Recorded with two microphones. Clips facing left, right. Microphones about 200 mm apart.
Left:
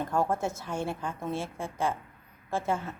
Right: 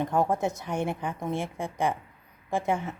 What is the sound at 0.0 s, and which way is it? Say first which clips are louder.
Speech: right 3 dB; 15° right (ahead or behind).